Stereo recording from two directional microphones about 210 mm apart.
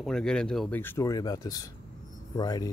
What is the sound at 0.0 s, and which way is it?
Speech, 5° left (ahead or behind).